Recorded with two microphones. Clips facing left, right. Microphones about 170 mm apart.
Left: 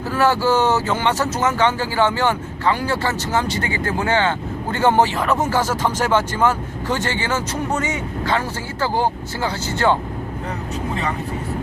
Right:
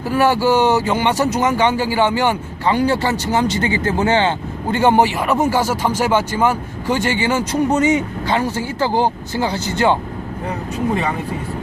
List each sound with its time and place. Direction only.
0.1 s speech: 15° right (ahead or behind)